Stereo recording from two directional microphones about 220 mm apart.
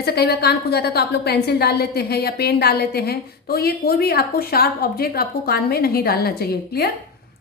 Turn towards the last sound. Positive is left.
turn(degrees=45)  # may be behind; listen again after turning